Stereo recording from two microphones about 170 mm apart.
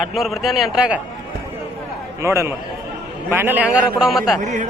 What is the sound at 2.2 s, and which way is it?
A man's voice, 15° right (ahead or behind).